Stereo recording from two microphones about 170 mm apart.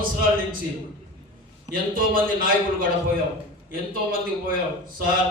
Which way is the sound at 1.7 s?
55° right (ahead or behind).